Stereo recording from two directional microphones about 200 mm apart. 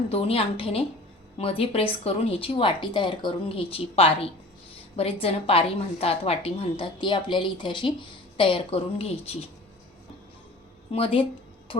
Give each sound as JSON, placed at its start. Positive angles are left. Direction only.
{"t": 0.1, "sound": "speech", "side_deg": 30}
{"t": 10.9, "sound": "speech", "side_deg": 25}